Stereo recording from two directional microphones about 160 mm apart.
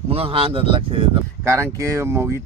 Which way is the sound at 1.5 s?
15° right (ahead or behind).